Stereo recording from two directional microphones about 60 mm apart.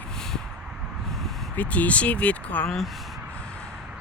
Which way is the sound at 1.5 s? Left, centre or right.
Left.